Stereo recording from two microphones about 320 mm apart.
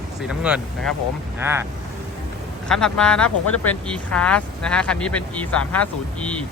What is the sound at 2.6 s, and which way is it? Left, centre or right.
Speech, centre.